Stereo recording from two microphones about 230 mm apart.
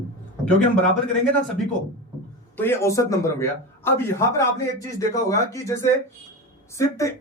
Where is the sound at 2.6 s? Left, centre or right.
Centre.